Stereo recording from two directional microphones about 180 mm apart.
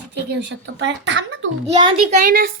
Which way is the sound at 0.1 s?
75° right (ahead or behind).